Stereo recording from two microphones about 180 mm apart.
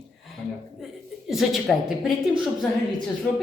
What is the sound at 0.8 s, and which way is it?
A woman's voice, centre (ahead or behind).